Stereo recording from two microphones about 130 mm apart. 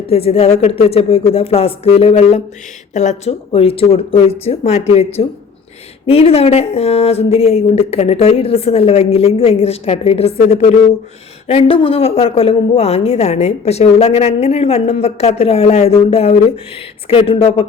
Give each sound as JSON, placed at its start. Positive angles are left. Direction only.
{"t": 0.1, "sound": "a woman's voice", "side_deg": 50}
{"t": 2.9, "sound": "a woman's voice", "side_deg": 65}